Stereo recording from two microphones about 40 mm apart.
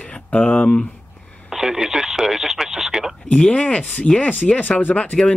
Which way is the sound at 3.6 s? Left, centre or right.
Left.